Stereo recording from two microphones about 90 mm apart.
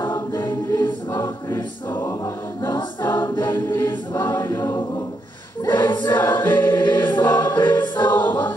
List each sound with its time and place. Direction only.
0.3 s choir: 45° left (ahead or behind)
1.1 s choir: 30° left (ahead or behind)
3.1 s choir: 45° left (ahead or behind)
5.7 s choir: 50° left (ahead or behind)
7.3 s music: 50° left (ahead or behind)
8.2 s choir: 55° left (ahead or behind)